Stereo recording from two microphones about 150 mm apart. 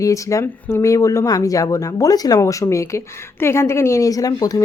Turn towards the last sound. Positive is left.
turn(degrees=25)  # may be behind; listen again after turning